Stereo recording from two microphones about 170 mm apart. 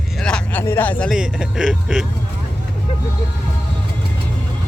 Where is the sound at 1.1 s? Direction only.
5° right (ahead or behind).